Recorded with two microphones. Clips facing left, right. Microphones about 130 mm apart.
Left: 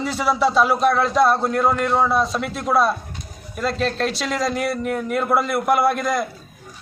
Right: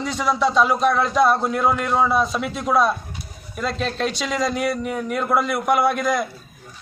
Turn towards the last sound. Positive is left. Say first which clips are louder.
# even
turn(degrees=0)  # may be behind; listen again after turning